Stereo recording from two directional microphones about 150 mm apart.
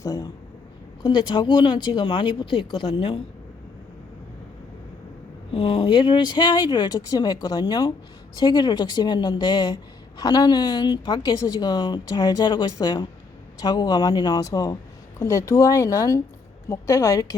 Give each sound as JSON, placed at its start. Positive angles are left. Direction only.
{"t": 0.0, "sound": "speech", "side_deg": 25}
{"t": 5.5, "sound": "a woman's voice", "side_deg": 35}